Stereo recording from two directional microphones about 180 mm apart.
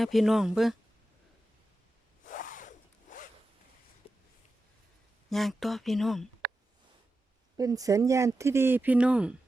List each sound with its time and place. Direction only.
0.0 s speech: centre (ahead or behind)
2.2 s zipper: 45° left (ahead or behind)
4.0 s a sound: 35° left (ahead or behind)
5.3 s speech: centre (ahead or behind)
6.4 s a sound: 60° right (ahead or behind)
7.5 s speech: 20° right (ahead or behind)